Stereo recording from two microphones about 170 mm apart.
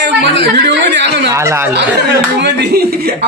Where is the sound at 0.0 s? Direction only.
90° right.